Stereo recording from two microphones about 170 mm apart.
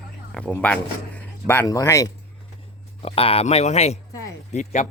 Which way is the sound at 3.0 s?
35° left (ahead or behind).